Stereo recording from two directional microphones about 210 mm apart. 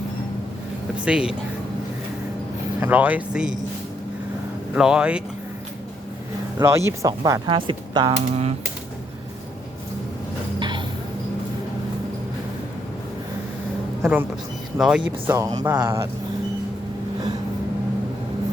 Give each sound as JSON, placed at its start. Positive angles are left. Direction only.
{"t": 1.0, "sound": "speech", "side_deg": -5}
{"t": 2.8, "sound": "speech", "side_deg": -10}
{"t": 4.7, "sound": "speech", "side_deg": -5}
{"t": 6.6, "sound": "speech", "side_deg": -15}
{"t": 10.6, "sound": "a sound", "side_deg": -20}
{"t": 14.0, "sound": "speech", "side_deg": -10}